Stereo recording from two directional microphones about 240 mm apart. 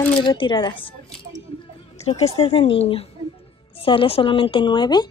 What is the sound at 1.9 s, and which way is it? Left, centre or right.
A woman's voice, left.